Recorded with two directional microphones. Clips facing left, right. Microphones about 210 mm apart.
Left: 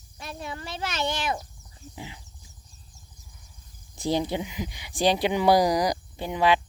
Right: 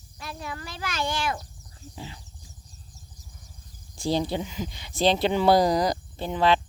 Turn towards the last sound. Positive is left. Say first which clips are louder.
# even
turn(degrees=10)  # may be behind; listen again after turning